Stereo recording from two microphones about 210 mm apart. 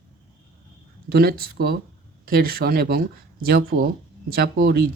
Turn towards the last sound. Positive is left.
turn(degrees=-45)  # may be behind; listen again after turning